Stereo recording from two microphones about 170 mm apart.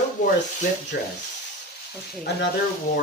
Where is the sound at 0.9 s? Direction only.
65° left (ahead or behind).